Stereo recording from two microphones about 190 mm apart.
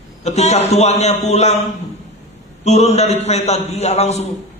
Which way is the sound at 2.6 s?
35° left (ahead or behind).